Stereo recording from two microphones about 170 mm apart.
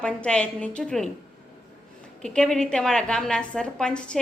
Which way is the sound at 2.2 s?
5° left (ahead or behind).